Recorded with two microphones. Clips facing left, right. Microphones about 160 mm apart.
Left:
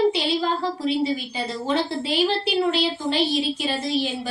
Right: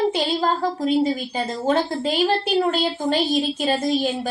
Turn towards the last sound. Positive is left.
turn(degrees=-45)  # may be behind; listen again after turning